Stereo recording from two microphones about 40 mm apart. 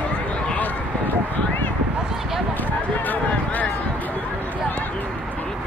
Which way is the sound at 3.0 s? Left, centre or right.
Left.